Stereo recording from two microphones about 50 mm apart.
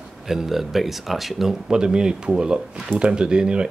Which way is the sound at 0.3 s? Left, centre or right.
Centre.